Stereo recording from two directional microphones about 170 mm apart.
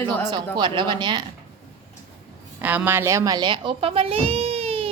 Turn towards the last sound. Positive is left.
turn(degrees=-35)  # may be behind; listen again after turning